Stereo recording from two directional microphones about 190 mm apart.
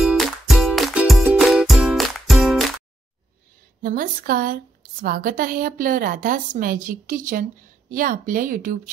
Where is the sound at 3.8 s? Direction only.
50° right (ahead or behind).